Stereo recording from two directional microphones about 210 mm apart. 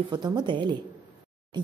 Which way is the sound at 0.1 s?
20° right (ahead or behind).